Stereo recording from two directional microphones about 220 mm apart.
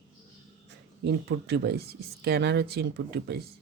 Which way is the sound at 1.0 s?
50° right (ahead or behind).